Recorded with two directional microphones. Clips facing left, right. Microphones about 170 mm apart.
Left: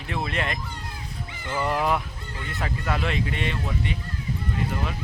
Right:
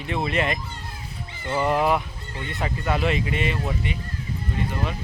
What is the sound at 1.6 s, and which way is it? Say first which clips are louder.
Speech: right 3 dB; 5° right (ahead or behind).